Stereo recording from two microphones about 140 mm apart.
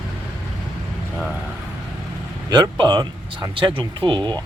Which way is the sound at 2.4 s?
30° right (ahead or behind).